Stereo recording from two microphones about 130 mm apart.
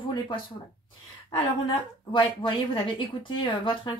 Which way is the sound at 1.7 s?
40° left (ahead or behind).